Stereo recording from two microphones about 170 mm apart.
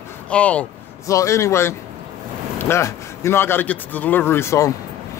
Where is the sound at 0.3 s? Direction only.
5° left (ahead or behind).